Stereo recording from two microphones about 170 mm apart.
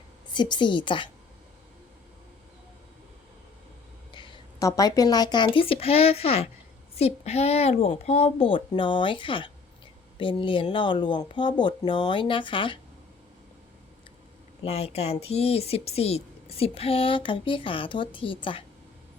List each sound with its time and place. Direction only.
0.3 s speech: 25° left (ahead or behind)
4.1 s speech: 25° left (ahead or behind)
14.6 s speech: 35° left (ahead or behind)